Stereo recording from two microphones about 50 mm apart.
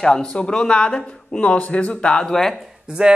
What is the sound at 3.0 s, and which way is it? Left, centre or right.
Speech, centre.